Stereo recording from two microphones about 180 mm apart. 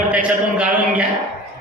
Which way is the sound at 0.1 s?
5° right (ahead or behind).